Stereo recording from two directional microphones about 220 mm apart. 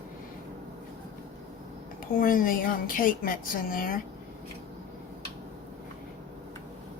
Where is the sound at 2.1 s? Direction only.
40° left (ahead or behind).